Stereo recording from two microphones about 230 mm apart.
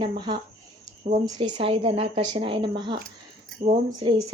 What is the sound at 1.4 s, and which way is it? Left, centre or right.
Speech, right.